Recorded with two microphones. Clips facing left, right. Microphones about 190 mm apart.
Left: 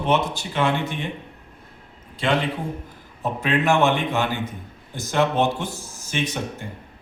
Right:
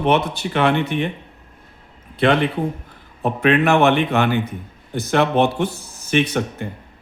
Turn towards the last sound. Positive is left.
turn(degrees=-65)  # may be behind; listen again after turning